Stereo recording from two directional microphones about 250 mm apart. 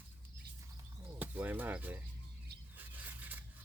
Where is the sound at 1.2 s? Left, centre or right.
Centre.